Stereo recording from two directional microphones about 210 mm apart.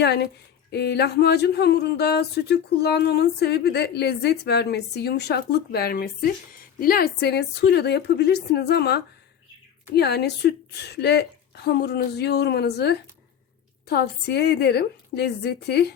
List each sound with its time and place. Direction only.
0.0 s speech: 50° left (ahead or behind)